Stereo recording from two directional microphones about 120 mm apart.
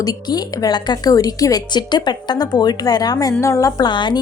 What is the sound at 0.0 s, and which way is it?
A woman's voice, 30° left (ahead or behind).